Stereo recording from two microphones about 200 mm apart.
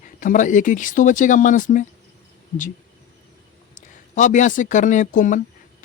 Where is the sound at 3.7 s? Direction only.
40° left (ahead or behind).